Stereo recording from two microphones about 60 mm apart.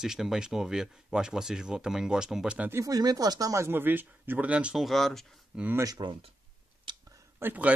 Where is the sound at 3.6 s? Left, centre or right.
Right.